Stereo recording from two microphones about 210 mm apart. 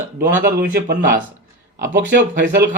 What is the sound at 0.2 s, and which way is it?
Speech, 45° right (ahead or behind).